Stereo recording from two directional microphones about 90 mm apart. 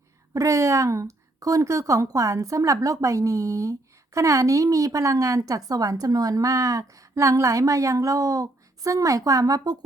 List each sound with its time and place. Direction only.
0.3 s speech: 35° right (ahead or behind)